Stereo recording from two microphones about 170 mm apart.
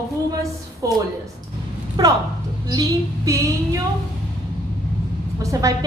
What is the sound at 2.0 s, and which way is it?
A woman's voice, 25° right (ahead or behind).